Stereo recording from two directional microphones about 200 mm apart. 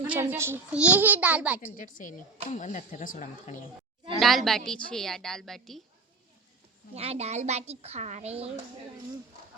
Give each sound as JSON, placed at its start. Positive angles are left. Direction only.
{"t": 0.0, "sound": "a child's voice", "side_deg": -10}
{"t": 1.7, "sound": "speech", "side_deg": 40}
{"t": 4.2, "sound": "a woman's voice", "side_deg": 0}
{"t": 6.9, "sound": "a woman's voice", "side_deg": -30}